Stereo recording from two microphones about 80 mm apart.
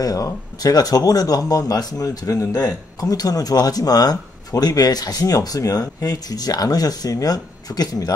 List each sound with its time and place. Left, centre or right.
0.0 s speech: left